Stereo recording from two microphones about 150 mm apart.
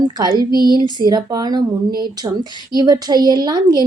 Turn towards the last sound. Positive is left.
turn(degrees=-25)  # may be behind; listen again after turning